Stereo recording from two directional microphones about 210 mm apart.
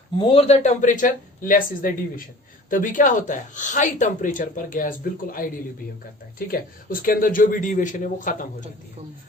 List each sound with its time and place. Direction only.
0.2 s speech: 25° left (ahead or behind)
6.5 s speech: 45° left (ahead or behind)